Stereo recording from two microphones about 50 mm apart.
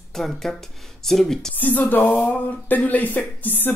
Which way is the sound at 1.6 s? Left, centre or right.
Left.